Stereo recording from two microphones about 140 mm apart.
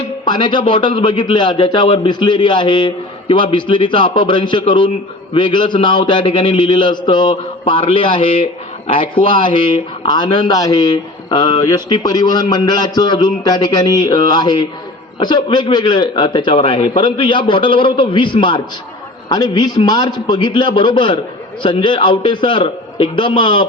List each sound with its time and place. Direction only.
0.3 s a man's voice: 35° left (ahead or behind)